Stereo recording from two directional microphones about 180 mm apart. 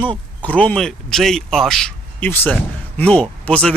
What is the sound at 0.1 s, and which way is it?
Speech, 5° left (ahead or behind).